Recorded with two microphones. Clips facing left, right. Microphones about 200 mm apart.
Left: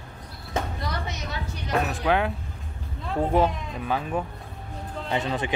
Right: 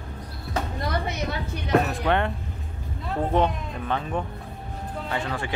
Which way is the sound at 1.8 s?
Centre (ahead or behind).